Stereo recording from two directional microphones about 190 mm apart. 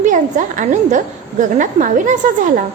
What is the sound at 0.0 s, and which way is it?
A woman's voice, 40° right (ahead or behind).